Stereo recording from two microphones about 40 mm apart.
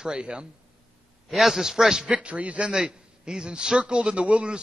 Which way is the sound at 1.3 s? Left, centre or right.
Centre.